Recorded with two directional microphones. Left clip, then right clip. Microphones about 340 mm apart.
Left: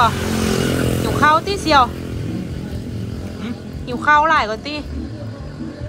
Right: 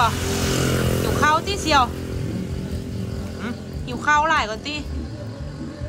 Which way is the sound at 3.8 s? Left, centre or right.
Centre.